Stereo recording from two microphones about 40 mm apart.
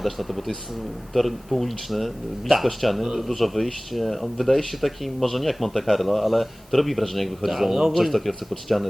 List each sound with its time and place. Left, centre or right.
0.0 s speech: centre